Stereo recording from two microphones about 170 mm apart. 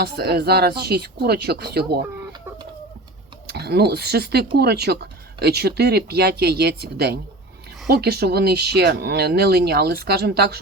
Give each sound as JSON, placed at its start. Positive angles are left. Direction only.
{"t": 0.0, "sound": "speech", "side_deg": -70}
{"t": 3.4, "sound": "speech", "side_deg": -70}